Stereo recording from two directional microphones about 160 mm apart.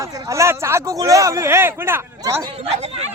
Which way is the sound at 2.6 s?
45° right (ahead or behind).